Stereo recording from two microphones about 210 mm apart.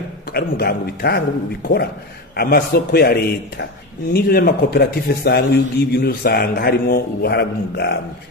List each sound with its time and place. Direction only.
0.3 s a man's voice: 45° left (ahead or behind)